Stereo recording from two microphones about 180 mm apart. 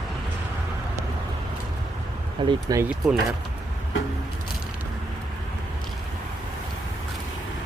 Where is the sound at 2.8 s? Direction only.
Centre (ahead or behind).